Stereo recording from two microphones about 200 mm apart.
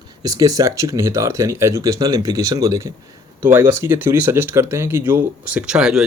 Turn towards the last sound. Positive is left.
turn(degrees=0)  # may be behind; listen again after turning